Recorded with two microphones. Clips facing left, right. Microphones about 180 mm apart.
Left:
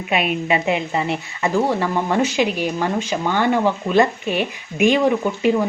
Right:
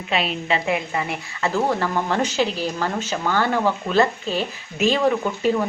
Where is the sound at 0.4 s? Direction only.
20° left (ahead or behind).